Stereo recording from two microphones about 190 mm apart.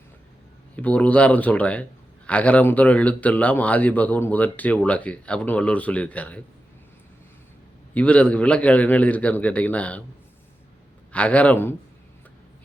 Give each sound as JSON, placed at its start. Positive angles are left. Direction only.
{"t": 0.8, "sound": "a man's voice", "side_deg": 5}
{"t": 7.9, "sound": "a man's voice", "side_deg": 5}
{"t": 11.1, "sound": "a man's voice", "side_deg": 5}